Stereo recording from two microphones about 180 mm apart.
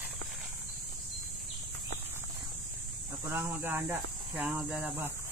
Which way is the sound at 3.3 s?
10° right (ahead or behind).